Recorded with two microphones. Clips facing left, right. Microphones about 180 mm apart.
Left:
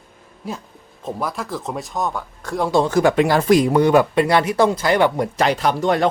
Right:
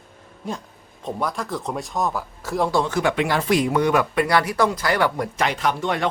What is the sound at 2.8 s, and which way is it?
Speech, 40° left (ahead or behind).